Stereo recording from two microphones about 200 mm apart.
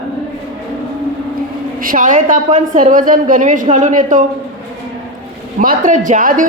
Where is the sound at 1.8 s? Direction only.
45° right (ahead or behind).